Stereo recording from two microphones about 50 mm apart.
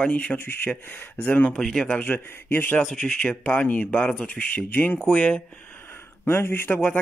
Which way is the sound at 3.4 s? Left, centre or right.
Left.